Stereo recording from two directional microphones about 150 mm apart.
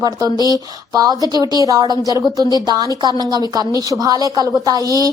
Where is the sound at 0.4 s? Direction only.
25° right (ahead or behind).